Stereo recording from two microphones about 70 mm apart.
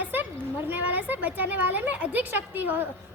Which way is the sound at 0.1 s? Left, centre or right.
Right.